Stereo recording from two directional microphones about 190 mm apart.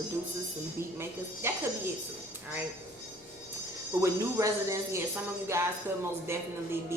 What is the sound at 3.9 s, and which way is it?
A woman's voice, 15° right (ahead or behind).